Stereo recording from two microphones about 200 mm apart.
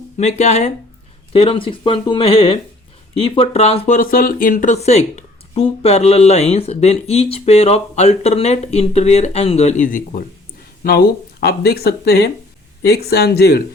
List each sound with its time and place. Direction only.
0.2 s speech: 35° left (ahead or behind); by 13.7 s 50° left (ahead or behind)